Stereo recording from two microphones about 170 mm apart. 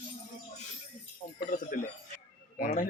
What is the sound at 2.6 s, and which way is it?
Speech, 50° left (ahead or behind).